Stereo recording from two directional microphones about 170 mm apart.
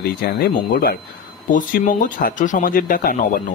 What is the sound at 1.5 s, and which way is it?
Speech, 50° left (ahead or behind).